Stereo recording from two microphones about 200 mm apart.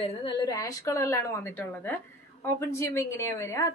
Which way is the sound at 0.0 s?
25° left (ahead or behind).